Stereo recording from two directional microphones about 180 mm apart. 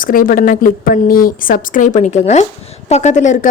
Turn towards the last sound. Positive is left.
turn(degrees=40)  # may be behind; listen again after turning